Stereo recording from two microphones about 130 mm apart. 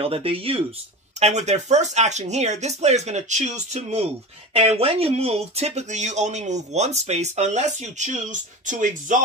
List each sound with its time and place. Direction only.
0.0 s speech: 45° right (ahead or behind)
1.2 s speech: 60° right (ahead or behind); by 9.2 s 75° right (ahead or behind)